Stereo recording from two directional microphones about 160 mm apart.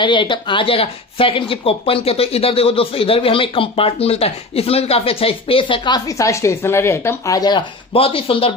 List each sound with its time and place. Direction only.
0.0 s speech: 30° left (ahead or behind)